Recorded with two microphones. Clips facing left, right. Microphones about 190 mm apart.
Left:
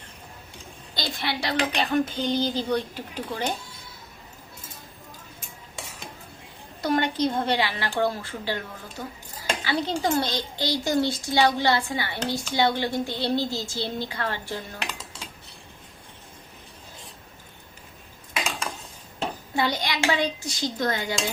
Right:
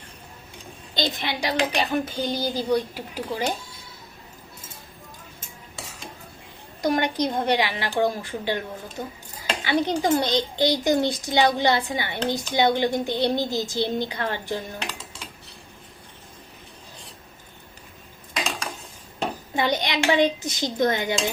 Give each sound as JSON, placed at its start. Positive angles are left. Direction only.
{"t": 0.9, "sound": "speech", "side_deg": -20}
{"t": 6.8, "sound": "a child's voice", "side_deg": -15}
{"t": 19.5, "sound": "a child's voice", "side_deg": -20}